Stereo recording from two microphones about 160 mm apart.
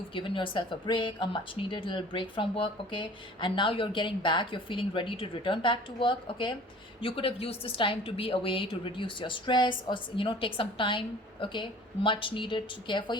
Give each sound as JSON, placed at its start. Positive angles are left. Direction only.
{"t": 0.1, "sound": "speech", "side_deg": 30}